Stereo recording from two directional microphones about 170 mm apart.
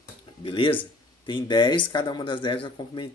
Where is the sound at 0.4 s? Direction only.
30° left (ahead or behind).